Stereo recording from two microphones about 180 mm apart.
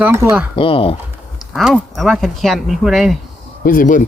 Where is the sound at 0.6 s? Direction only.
30° left (ahead or behind).